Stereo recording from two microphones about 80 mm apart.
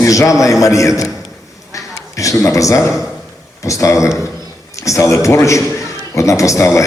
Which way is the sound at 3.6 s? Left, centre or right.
Left.